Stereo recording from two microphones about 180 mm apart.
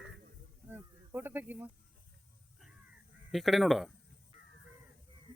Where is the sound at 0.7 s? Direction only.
10° right (ahead or behind).